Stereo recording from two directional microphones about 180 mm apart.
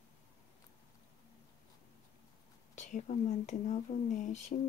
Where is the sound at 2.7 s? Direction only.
40° left (ahead or behind).